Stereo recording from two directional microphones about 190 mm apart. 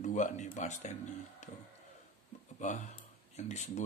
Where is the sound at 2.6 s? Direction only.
40° left (ahead or behind).